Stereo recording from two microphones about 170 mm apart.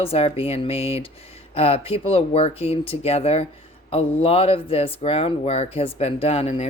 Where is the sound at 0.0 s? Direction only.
35° left (ahead or behind).